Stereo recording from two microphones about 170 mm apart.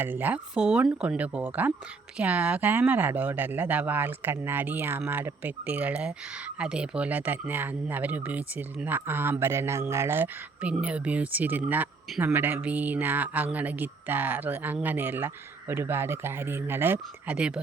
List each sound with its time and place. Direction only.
0.0 s speech: 10° right (ahead or behind)